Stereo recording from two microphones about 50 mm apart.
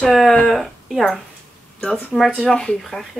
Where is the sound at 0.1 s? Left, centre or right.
Centre.